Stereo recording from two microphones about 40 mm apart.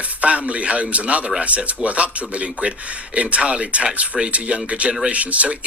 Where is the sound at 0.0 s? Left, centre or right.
Right.